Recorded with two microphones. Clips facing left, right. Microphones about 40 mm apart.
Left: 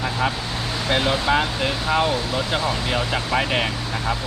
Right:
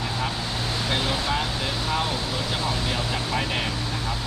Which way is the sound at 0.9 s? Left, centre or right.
Left.